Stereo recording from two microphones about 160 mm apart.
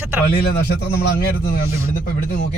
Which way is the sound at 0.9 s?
70° left (ahead or behind).